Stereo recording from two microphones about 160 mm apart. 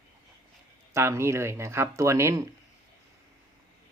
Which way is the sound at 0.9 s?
15° right (ahead or behind).